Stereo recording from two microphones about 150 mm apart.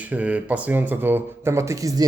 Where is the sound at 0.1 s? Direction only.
10° right (ahead or behind).